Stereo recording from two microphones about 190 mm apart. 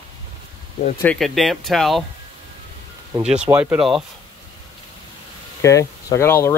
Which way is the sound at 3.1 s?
20° right (ahead or behind).